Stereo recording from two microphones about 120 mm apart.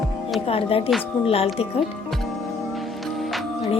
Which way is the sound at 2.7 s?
Centre (ahead or behind).